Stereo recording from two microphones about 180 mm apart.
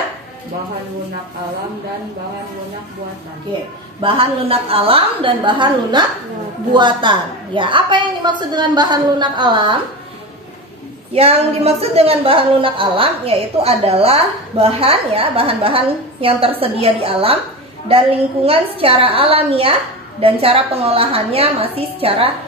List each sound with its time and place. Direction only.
4.0 s a woman's voice: 30° right (ahead or behind)
11.1 s a woman's voice: 35° right (ahead or behind)